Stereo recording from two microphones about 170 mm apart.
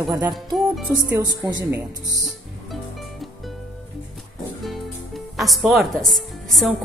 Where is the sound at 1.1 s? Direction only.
25° right (ahead or behind).